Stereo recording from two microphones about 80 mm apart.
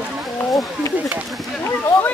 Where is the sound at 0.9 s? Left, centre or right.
Right.